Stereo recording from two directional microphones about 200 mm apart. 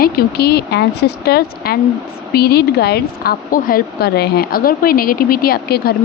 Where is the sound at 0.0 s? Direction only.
50° left (ahead or behind).